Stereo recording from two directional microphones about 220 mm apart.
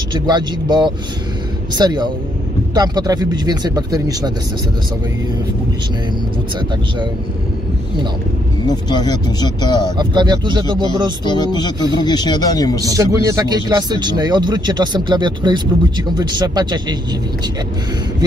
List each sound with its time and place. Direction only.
0.1 s speech: 20° right (ahead or behind)
8.6 s speech: 20° left (ahead or behind)
9.9 s speech: 20° right (ahead or behind)
11.2 s speech: 20° left (ahead or behind)
12.8 s speech: 15° right (ahead or behind)